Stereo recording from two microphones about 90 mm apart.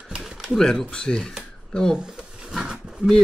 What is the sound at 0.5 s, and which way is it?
Speech, 5° left (ahead or behind).